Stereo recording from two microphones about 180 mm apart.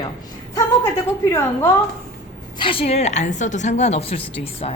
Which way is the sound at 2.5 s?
30° left (ahead or behind).